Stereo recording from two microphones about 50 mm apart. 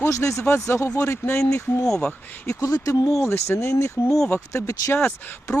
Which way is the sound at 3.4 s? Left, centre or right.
Left.